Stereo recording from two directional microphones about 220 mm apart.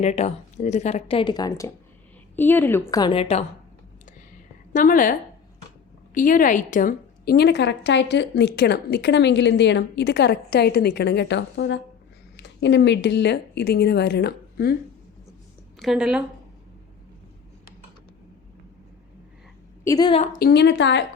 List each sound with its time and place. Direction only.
0.0 s a woman's voice: 30° left (ahead or behind)
4.7 s a woman's voice: 40° left (ahead or behind)
6.1 s a woman's voice: 40° left (ahead or behind)
15.8 s a woman's voice: centre (ahead or behind)
19.8 s a woman's voice: 15° left (ahead or behind)
20.4 s a woman's voice: 50° left (ahead or behind)